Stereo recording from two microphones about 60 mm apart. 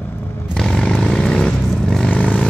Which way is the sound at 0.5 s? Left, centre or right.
Centre.